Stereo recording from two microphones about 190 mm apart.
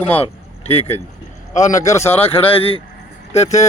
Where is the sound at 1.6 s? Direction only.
15° left (ahead or behind).